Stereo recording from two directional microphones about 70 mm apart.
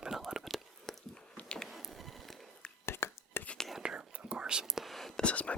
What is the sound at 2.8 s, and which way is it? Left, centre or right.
Whispering, left.